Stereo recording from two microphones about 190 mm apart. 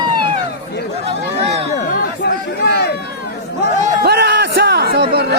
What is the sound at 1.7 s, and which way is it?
Chatter, 40° left (ahead or behind).